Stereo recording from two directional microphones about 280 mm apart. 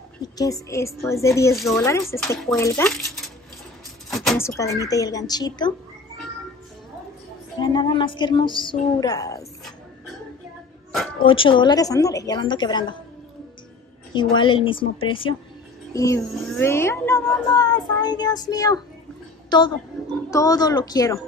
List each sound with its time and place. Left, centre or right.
0.2 s speech: centre
7.5 s speech: centre
11.2 s speech: centre
14.1 s speech: centre
20.2 s speech: centre